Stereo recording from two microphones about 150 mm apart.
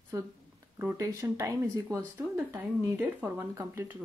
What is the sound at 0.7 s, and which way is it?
Speech, 20° right (ahead or behind).